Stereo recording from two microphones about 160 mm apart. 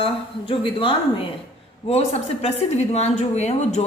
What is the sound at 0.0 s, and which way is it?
A woman's voice, 35° left (ahead or behind).